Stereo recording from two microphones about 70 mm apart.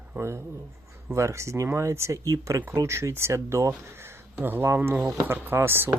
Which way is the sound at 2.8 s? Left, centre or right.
Right.